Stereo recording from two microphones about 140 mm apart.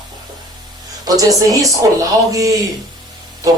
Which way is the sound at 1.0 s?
25° right (ahead or behind).